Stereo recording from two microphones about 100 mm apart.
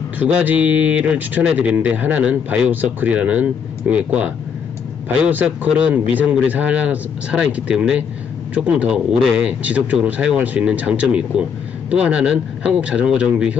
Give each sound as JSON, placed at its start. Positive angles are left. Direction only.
{"t": 0.2, "sound": "speech", "side_deg": -15}